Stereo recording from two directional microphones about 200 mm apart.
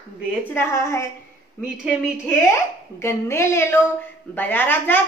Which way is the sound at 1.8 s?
5° right (ahead or behind).